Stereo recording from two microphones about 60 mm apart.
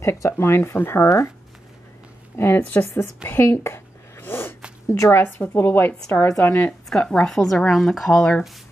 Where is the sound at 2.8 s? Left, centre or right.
Left.